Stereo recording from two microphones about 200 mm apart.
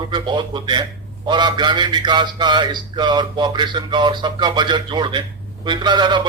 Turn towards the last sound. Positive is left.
turn(degrees=-20)  # may be behind; listen again after turning